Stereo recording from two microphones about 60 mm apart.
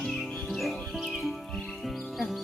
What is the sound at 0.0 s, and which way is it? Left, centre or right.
Music, centre.